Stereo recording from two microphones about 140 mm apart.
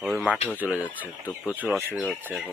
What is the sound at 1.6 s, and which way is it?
Speech, centre (ahead or behind).